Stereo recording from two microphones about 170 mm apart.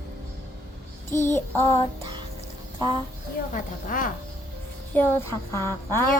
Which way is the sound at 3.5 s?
55° left (ahead or behind).